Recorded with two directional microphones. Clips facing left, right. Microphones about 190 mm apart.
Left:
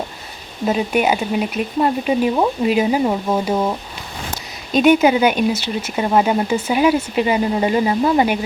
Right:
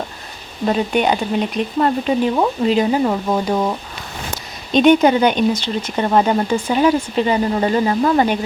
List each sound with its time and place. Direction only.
0.6 s speech: 5° left (ahead or behind)